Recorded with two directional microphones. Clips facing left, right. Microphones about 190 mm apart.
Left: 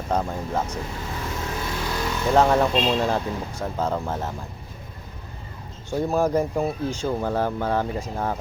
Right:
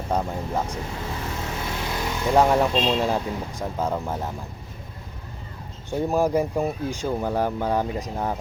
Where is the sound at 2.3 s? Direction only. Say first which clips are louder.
Even; 10° right (ahead or behind).